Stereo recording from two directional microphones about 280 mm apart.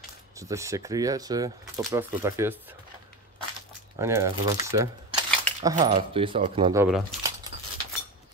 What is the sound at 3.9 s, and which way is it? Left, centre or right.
Speech, centre.